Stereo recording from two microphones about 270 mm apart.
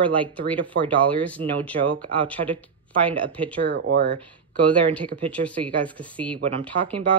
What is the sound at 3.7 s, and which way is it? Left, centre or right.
Speech, right.